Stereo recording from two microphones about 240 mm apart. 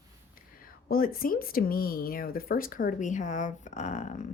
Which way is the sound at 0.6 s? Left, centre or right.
Left.